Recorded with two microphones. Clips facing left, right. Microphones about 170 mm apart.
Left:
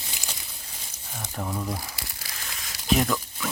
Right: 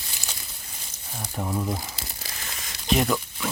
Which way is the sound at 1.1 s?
5° right (ahead or behind).